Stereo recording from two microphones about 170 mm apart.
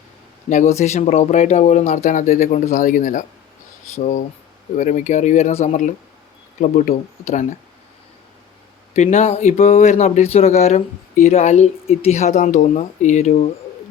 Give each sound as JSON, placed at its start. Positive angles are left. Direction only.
{"t": 0.5, "sound": "speech", "side_deg": 40}
{"t": 8.9, "sound": "speech", "side_deg": 45}